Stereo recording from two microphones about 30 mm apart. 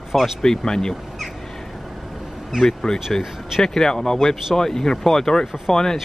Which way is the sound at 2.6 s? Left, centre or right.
Centre.